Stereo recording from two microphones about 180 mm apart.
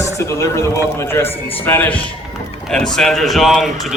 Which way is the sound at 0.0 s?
15° left (ahead or behind).